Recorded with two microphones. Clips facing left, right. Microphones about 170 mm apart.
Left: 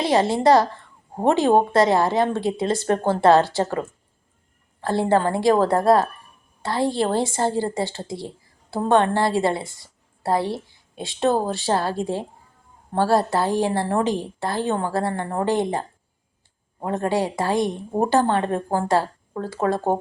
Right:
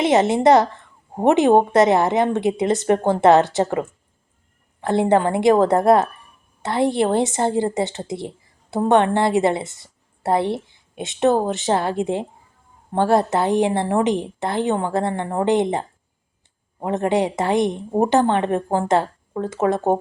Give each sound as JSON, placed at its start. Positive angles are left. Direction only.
{"t": 0.0, "sound": "a woman's voice", "side_deg": -20}